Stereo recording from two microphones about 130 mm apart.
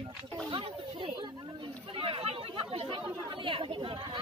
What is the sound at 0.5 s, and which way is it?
Wild animals, 40° right (ahead or behind).